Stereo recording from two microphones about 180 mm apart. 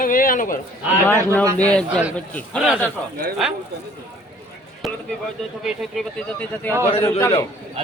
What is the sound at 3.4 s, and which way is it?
Speech, centre (ahead or behind).